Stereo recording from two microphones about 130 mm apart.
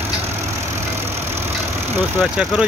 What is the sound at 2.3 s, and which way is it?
Speech, 5° right (ahead or behind).